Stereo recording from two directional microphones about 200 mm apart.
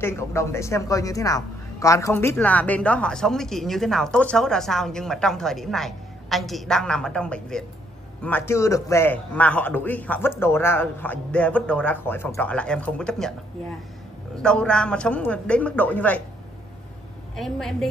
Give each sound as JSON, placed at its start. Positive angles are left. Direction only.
{"t": 0.0, "sound": "a woman's voice", "side_deg": 15}
{"t": 14.3, "sound": "a woman's voice", "side_deg": 5}
{"t": 17.4, "sound": "a woman's voice", "side_deg": 0}